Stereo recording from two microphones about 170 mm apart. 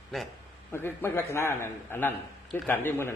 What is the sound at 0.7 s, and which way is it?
A man's voice, 15° left (ahead or behind).